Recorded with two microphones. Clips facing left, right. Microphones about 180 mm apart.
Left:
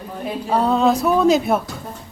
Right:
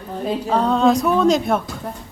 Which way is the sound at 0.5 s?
5° left (ahead or behind).